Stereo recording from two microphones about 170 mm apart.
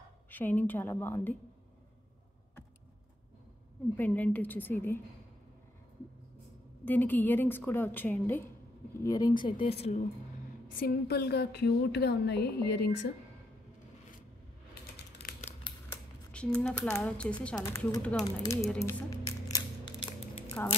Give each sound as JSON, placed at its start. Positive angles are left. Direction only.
{"t": 0.3, "sound": "a woman's voice", "side_deg": 10}
{"t": 3.9, "sound": "a woman's voice", "side_deg": 10}
{"t": 6.8, "sound": "a woman's voice", "side_deg": 10}
{"t": 10.8, "sound": "a woman's voice", "side_deg": 65}
{"t": 14.7, "sound": "typing", "side_deg": 65}
{"t": 15.9, "sound": "speech", "side_deg": 5}
{"t": 17.6, "sound": "a woman's voice", "side_deg": 20}
{"t": 20.6, "sound": "a woman's voice", "side_deg": 10}